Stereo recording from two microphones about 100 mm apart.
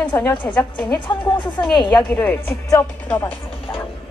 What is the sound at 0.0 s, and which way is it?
A woman's voice, 20° left (ahead or behind).